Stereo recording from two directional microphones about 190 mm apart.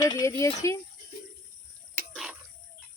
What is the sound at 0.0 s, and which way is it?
Speech, 20° left (ahead or behind).